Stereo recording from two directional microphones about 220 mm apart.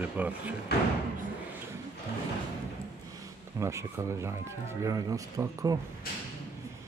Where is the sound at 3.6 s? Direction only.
15° right (ahead or behind).